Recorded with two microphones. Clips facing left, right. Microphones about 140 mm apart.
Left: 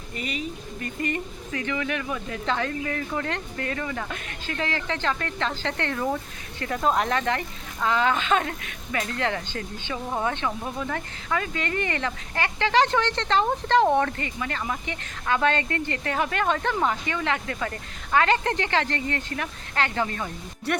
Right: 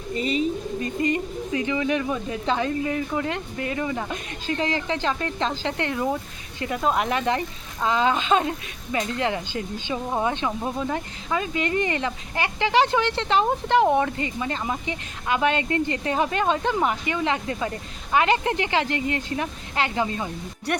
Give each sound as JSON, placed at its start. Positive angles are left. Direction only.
{"t": 0.1, "sound": "speech", "side_deg": -30}